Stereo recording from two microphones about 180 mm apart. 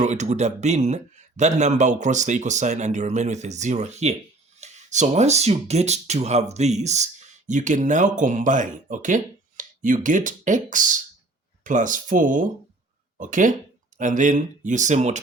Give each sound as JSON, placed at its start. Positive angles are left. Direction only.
{"t": 0.0, "sound": "speech", "side_deg": -40}